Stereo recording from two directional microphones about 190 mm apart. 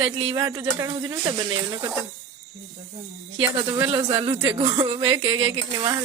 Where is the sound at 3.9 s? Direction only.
25° right (ahead or behind).